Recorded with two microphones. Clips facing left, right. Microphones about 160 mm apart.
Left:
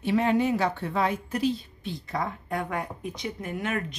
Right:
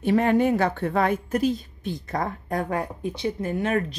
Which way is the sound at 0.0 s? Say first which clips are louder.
Right 4 dB; 50° right (ahead or behind).